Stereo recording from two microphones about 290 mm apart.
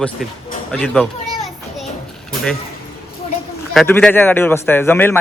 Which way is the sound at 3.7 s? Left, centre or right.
Centre.